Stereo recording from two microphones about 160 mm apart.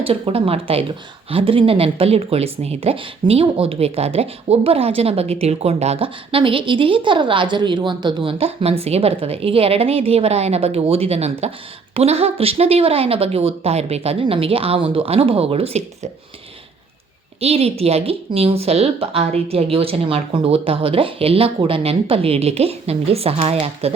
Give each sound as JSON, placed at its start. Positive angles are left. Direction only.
{"t": 0.0, "sound": "speech", "side_deg": -35}
{"t": 17.4, "sound": "speech", "side_deg": -40}